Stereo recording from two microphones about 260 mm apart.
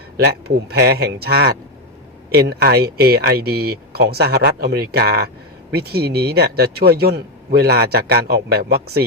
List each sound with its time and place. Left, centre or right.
0.2 s speech: right